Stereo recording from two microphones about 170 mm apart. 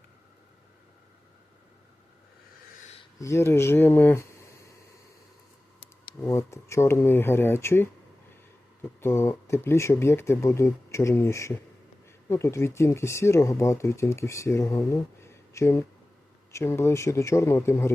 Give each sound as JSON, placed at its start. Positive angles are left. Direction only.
{"t": 3.2, "sound": "speech", "side_deg": 15}
{"t": 6.2, "sound": "speech", "side_deg": 15}
{"t": 9.0, "sound": "speech", "side_deg": 15}